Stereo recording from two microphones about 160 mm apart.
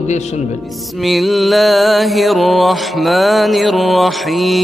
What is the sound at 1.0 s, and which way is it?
Mantra, centre (ahead or behind).